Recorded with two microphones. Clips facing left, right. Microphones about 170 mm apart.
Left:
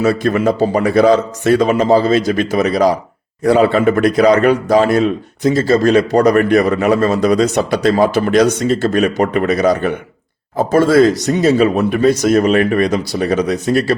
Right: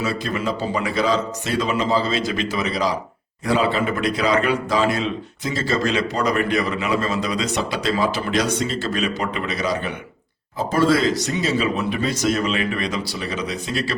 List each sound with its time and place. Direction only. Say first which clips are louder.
0.0 s speech: left 10 dB; 55° left (ahead or behind)